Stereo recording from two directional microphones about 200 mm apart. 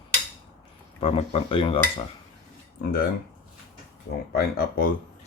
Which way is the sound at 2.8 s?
45° left (ahead or behind).